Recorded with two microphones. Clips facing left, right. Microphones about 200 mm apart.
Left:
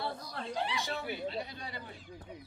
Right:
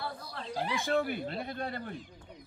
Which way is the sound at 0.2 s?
30° right (ahead or behind).